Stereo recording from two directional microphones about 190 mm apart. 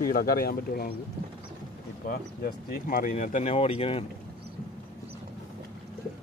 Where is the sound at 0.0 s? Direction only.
50° left (ahead or behind).